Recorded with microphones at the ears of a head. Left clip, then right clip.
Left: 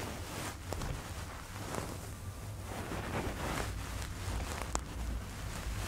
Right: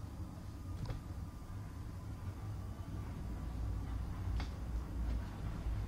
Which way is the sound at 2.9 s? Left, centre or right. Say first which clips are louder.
Left 16 dB; left.